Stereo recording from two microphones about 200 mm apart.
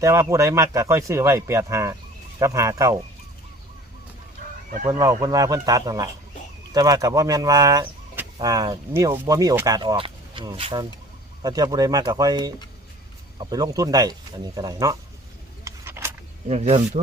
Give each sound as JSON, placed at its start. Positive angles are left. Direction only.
{"t": 0.0, "sound": "speech", "side_deg": -15}
{"t": 4.9, "sound": "speech", "side_deg": -20}
{"t": 15.6, "sound": "a sound", "side_deg": -10}
{"t": 16.5, "sound": "speech", "side_deg": -35}